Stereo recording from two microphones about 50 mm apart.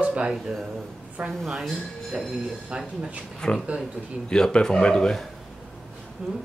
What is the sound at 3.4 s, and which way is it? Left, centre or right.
Speech, centre.